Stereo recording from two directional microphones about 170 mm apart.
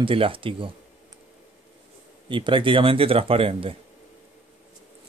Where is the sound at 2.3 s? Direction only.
30° right (ahead or behind).